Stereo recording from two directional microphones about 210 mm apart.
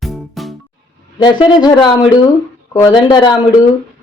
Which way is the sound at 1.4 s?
20° left (ahead or behind).